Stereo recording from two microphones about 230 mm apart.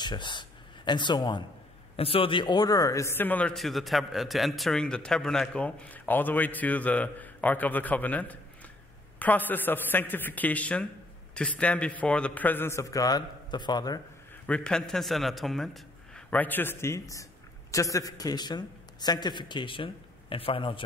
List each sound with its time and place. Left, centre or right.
0.0 s a man's voice: centre
14.4 s a man's voice: centre; by 20.8 s left